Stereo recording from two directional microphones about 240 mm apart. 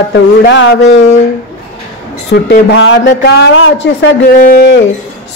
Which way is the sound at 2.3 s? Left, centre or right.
Left.